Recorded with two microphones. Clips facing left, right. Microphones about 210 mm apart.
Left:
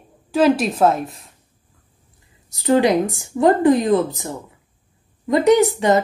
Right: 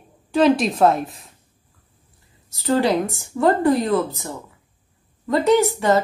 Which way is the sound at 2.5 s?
15° left (ahead or behind).